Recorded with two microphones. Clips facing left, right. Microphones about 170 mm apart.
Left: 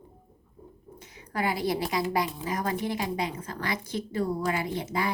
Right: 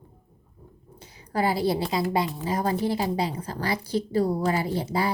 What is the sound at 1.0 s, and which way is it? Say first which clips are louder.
A woman's voice: right 5 dB; 30° right (ahead or behind).